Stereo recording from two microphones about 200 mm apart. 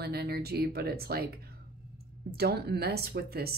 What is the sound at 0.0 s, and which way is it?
Speech, 50° right (ahead or behind).